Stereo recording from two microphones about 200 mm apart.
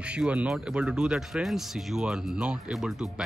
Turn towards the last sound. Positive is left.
turn(degrees=-5)  # may be behind; listen again after turning